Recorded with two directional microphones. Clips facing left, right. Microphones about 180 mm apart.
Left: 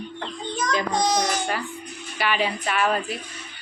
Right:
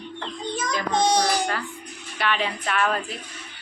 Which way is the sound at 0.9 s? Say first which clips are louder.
Right 6 dB; 30° right (ahead or behind).